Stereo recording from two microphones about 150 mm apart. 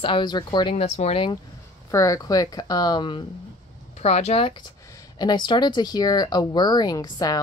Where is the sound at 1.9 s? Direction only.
20° left (ahead or behind).